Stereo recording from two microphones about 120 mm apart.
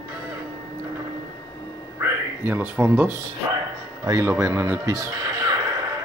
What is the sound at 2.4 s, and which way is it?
Speech, 15° right (ahead or behind).